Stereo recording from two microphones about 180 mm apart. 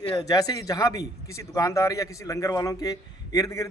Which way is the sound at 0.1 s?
20° left (ahead or behind).